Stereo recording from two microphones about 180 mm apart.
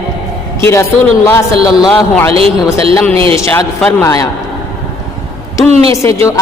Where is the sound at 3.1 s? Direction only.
30° right (ahead or behind).